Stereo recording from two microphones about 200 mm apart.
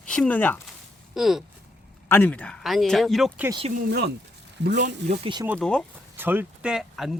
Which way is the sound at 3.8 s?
55° right (ahead or behind).